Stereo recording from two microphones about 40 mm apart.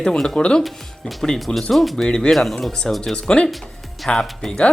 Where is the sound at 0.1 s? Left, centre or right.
Centre.